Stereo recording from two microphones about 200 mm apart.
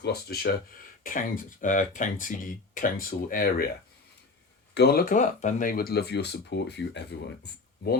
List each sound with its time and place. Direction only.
0.0 s speech: 50° left (ahead or behind)
4.7 s speech: 55° left (ahead or behind)